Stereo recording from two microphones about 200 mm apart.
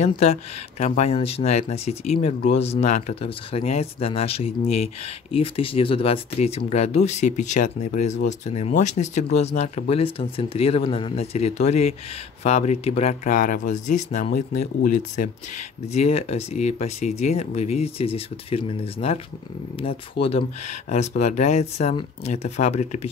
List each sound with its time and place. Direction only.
0.0 s speech: 35° left (ahead or behind)